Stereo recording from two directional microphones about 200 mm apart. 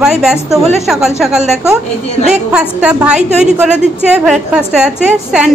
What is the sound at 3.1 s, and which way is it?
Speech, 35° right (ahead or behind).